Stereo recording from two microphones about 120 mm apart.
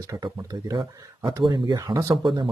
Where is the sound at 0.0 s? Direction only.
30° right (ahead or behind).